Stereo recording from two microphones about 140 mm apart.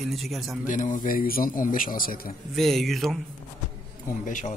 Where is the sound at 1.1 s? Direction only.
90° left.